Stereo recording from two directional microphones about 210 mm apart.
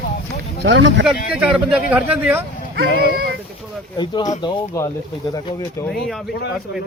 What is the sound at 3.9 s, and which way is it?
Speech, 20° left (ahead or behind).